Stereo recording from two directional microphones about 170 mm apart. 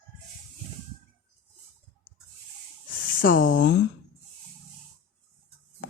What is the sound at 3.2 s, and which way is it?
Speech, 55° left (ahead or behind).